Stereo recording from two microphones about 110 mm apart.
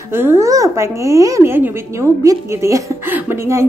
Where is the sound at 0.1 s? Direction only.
20° right (ahead or behind).